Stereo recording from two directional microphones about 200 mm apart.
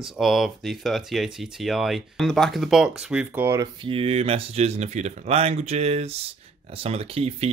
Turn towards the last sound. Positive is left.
turn(degrees=-30)  # may be behind; listen again after turning